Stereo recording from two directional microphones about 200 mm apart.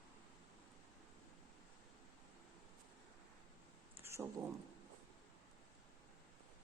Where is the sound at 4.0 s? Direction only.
15° right (ahead or behind).